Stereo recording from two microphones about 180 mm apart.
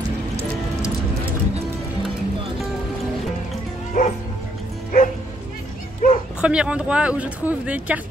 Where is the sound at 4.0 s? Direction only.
45° left (ahead or behind).